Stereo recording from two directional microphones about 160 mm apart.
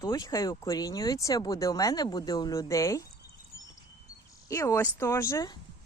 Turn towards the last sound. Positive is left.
turn(degrees=20)  # may be behind; listen again after turning